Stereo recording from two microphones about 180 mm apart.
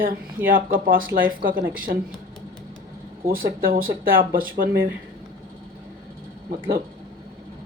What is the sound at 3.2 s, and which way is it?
Speech, 90° right.